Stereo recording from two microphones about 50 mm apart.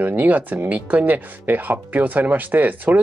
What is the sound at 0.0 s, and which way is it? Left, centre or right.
Speech, right.